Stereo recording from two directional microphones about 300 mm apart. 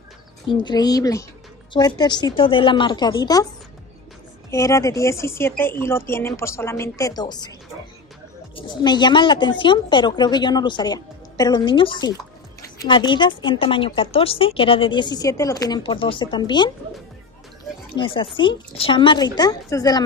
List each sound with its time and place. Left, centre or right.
0.5 s a woman's voice: centre
4.5 s a woman's voice: centre
8.5 s a woman's voice: centre
17.9 s a woman's voice: centre